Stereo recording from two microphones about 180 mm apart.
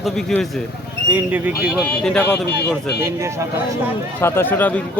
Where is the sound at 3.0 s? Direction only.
15° right (ahead or behind).